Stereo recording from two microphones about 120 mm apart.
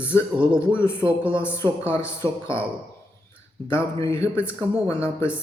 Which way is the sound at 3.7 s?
25° left (ahead or behind).